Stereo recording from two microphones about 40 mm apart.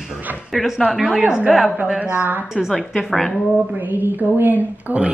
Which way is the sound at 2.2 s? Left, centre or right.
Right.